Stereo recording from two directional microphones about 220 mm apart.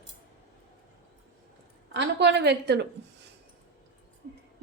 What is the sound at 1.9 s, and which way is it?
Speech, 50° right (ahead or behind).